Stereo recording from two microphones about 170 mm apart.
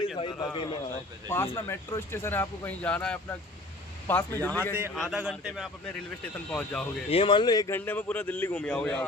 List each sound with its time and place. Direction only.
0.2 s speech: 30° left (ahead or behind)
1.3 s speech: 15° left (ahead or behind)
4.8 s a man's voice: 5° right (ahead or behind)
7.1 s speech: 30° left (ahead or behind)
7.8 s speech: 10° left (ahead or behind)